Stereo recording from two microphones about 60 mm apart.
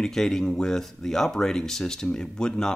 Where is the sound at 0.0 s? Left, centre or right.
Centre.